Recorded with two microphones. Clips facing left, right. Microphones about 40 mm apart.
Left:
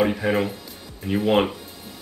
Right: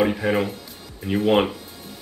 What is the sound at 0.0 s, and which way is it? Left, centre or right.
Speech, centre.